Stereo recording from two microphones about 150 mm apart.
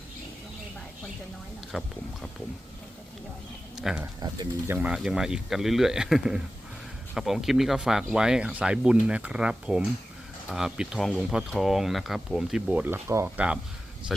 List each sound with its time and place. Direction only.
1.7 s speech: centre (ahead or behind)
3.8 s speech: 5° right (ahead or behind)
4.2 s speech: 25° right (ahead or behind)
4.7 s speech: 5° right (ahead or behind)